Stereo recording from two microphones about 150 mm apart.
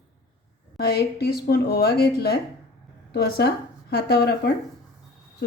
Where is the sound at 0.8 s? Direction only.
90° left.